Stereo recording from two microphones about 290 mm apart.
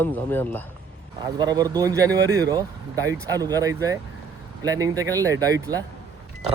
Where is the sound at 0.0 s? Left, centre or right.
Centre.